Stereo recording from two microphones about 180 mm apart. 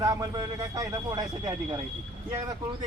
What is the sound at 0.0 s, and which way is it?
Speech, 20° right (ahead or behind).